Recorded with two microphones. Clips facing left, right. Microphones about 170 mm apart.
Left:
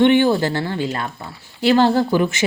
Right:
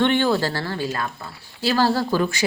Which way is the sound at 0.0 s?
15° left (ahead or behind).